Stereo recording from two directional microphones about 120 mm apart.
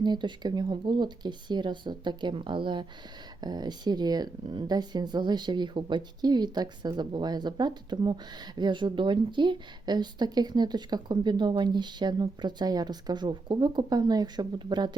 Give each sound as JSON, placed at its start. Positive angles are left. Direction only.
{"t": 0.0, "sound": "speech", "side_deg": -40}